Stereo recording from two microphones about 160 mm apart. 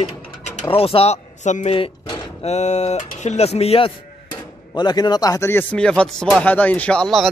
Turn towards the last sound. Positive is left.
turn(degrees=5)  # may be behind; listen again after turning